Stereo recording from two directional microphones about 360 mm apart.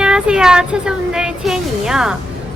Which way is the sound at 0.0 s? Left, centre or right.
Centre.